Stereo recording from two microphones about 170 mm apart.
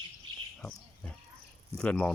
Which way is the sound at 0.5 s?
5° left (ahead or behind).